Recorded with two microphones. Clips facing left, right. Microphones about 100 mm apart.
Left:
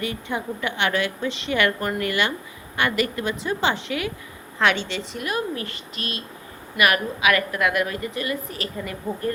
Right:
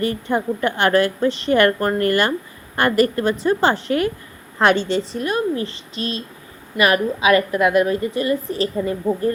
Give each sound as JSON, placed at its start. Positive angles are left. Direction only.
{"t": 0.0, "sound": "a woman's voice", "side_deg": -45}